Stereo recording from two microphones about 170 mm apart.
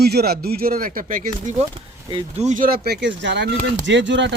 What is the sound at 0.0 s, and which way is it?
A man's voice, 70° right (ahead or behind).